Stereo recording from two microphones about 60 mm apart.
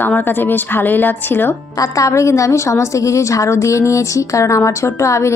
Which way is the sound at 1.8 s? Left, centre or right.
Left.